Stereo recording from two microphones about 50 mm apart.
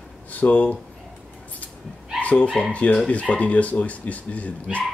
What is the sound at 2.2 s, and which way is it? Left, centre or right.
Speech, left.